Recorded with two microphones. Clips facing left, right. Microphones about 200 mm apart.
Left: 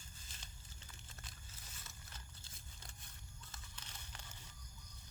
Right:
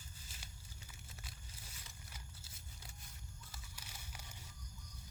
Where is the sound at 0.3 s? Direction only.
10° right (ahead or behind).